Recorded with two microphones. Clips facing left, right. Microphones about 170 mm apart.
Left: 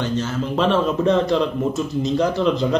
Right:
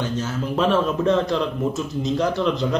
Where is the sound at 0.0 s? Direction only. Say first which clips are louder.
Left 2 dB; 5° right (ahead or behind).